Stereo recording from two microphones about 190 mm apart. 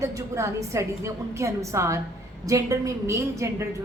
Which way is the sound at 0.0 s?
15° right (ahead or behind).